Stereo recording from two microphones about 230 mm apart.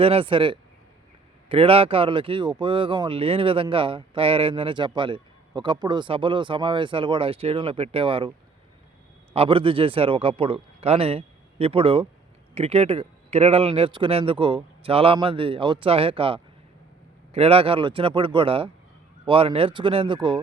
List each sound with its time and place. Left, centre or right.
0.0 s speech: right
9.3 s speech: right